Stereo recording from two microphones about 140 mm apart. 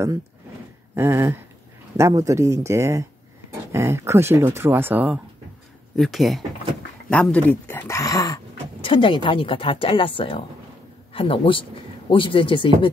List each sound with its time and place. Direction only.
0.9 s speech: 20° right (ahead or behind)
5.9 s speech: centre (ahead or behind); by 8.4 s 25° left (ahead or behind)
8.8 s speech: 35° left (ahead or behind)